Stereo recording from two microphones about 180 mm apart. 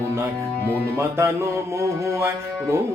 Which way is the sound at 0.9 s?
15° right (ahead or behind).